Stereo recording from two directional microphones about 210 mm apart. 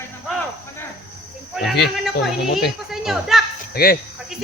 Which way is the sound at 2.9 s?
Centre (ahead or behind).